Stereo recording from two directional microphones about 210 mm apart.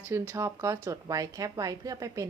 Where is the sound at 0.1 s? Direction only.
15° right (ahead or behind).